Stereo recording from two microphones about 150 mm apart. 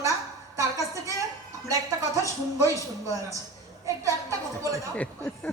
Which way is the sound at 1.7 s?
20° right (ahead or behind).